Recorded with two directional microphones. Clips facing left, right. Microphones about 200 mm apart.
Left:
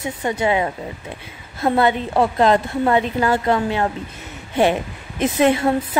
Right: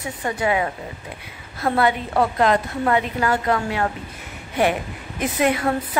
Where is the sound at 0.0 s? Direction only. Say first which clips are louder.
Left 3 dB; 25° left (ahead or behind).